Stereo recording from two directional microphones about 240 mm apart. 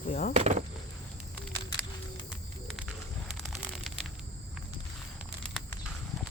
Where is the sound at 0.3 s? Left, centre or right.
Right.